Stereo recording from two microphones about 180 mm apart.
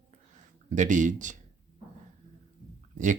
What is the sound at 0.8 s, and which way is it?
Speech, 45° right (ahead or behind).